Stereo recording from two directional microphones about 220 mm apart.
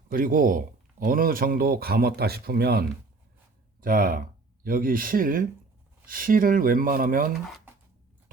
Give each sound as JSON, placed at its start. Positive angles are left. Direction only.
{"t": 0.1, "sound": "speech", "side_deg": -40}